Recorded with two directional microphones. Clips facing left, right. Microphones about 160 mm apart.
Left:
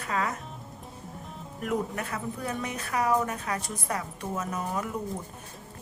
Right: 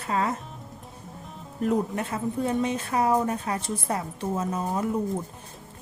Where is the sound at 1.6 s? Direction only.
30° right (ahead or behind).